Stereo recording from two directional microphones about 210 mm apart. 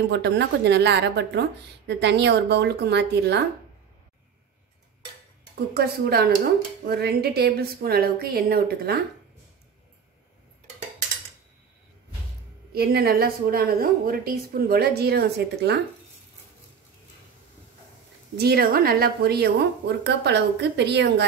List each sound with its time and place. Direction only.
0.1 s a woman's voice: 55° right (ahead or behind)
5.8 s a woman's voice: 50° right (ahead or behind)
12.7 s a woman's voice: 45° right (ahead or behind)
18.4 s a woman's voice: 50° right (ahead or behind)